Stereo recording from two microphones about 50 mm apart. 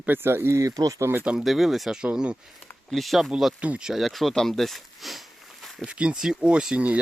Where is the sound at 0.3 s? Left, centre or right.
Right.